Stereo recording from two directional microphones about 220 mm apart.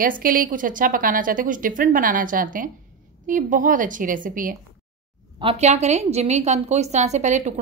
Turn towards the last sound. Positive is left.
turn(degrees=-35)  # may be behind; listen again after turning